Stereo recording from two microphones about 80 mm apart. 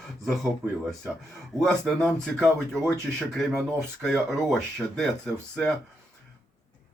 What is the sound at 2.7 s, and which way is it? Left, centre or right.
Speech, right.